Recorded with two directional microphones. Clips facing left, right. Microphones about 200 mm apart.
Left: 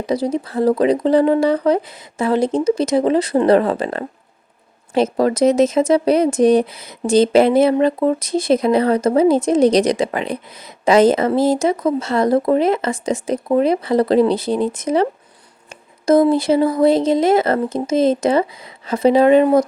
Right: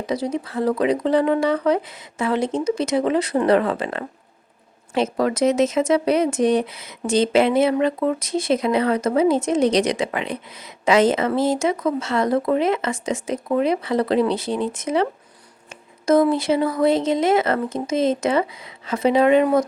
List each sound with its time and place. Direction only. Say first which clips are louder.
0.1 s speech: left 5 dB; 35° left (ahead or behind)
16.0 s speech: left 4 dB; 30° left (ahead or behind)